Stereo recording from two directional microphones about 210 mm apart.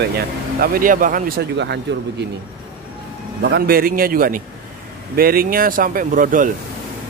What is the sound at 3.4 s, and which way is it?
Speech, 50° right (ahead or behind).